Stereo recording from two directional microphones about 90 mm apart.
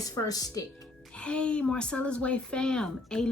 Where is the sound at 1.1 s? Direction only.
10° left (ahead or behind).